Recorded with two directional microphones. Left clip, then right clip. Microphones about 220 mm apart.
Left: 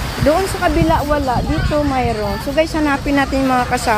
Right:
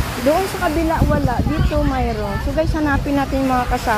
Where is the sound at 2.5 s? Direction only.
10° left (ahead or behind).